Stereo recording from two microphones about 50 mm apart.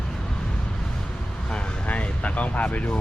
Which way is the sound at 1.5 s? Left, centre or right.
Centre.